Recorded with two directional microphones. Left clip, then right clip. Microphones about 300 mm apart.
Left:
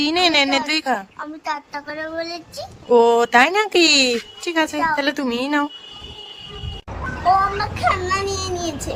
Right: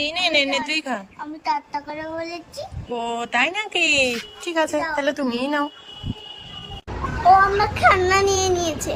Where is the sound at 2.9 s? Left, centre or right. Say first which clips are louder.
Left 12 dB; centre.